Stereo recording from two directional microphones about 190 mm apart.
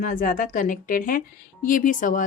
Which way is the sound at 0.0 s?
45° left (ahead or behind).